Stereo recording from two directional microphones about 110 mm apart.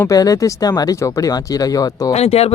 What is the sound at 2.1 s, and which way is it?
Speech, 70° left (ahead or behind).